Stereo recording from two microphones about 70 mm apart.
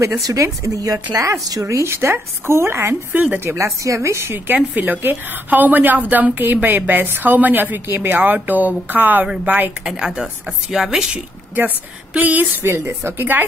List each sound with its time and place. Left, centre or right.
0.2 s speech: right
1.9 s speech: right
3.3 s speech: right
4.5 s a woman's voice: right
9.8 s speech: centre
11.5 s a woman's voice: right
12.6 s speech: right